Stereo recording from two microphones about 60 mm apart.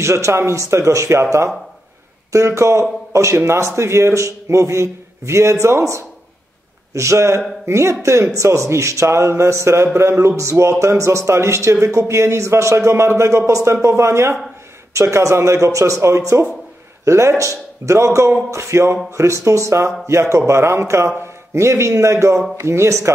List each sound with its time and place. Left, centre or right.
0.0 s a man's voice: right
2.3 s a man's voice: right
13.5 s speech: right
13.8 s a man's voice: right